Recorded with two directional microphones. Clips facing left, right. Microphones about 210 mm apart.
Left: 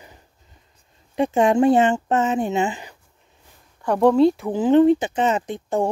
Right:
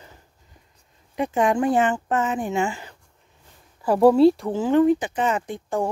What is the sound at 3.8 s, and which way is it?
Speech, 5° right (ahead or behind).